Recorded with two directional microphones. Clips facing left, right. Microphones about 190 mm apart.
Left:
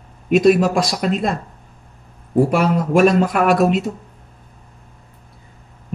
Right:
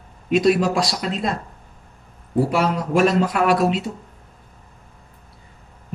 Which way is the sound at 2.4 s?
50° left (ahead or behind).